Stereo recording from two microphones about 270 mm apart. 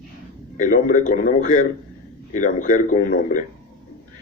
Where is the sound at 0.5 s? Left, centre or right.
Left.